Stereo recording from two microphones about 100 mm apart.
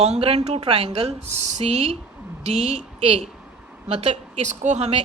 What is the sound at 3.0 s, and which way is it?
A woman's voice, 85° right.